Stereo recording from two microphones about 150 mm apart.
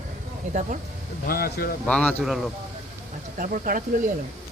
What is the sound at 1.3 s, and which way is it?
Speech, 85° left.